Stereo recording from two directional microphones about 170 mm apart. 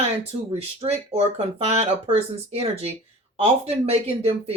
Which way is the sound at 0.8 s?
35° right (ahead or behind).